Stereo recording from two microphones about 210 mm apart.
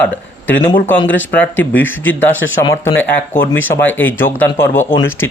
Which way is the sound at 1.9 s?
65° left (ahead or behind).